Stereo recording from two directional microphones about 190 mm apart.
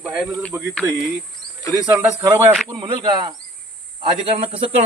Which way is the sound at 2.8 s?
25° right (ahead or behind).